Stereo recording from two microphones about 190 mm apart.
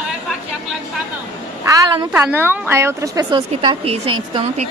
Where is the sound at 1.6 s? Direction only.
20° right (ahead or behind).